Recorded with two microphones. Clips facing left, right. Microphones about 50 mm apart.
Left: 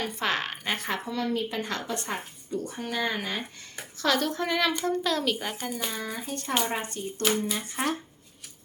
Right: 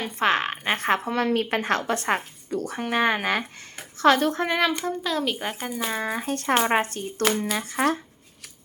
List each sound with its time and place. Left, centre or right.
0.2 s speech: right
0.8 s a woman's voice: right
2.8 s a woman's voice: right
4.0 s a woman's voice: right
5.9 s speech: right
6.3 s a woman's voice: right